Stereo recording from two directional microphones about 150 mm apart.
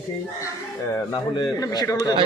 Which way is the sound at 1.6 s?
25° left (ahead or behind).